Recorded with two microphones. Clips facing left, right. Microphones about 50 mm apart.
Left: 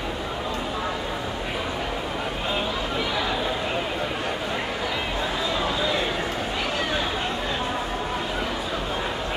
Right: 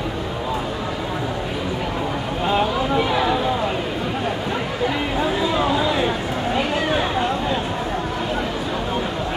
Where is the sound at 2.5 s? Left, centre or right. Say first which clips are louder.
Right 9 dB; centre.